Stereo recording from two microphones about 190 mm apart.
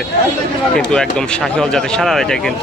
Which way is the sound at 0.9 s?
5° left (ahead or behind).